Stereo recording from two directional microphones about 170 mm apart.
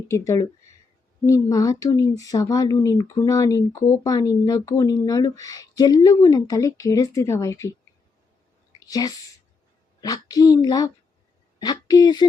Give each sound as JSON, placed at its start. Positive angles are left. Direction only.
{"t": 0.1, "sound": "a woman's voice", "side_deg": 15}
{"t": 8.9, "sound": "a woman's voice", "side_deg": 20}